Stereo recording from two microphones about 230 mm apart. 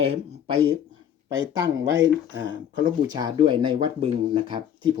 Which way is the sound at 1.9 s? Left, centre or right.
Right.